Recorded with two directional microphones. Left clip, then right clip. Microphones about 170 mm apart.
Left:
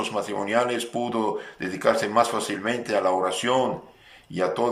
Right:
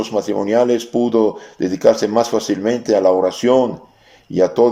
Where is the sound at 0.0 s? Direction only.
35° right (ahead or behind).